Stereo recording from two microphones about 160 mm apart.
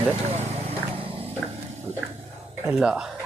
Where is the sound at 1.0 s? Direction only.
35° right (ahead or behind).